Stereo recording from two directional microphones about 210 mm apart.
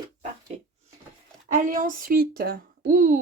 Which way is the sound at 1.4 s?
35° right (ahead or behind).